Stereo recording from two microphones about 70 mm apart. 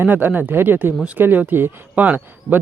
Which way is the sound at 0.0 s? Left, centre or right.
Right.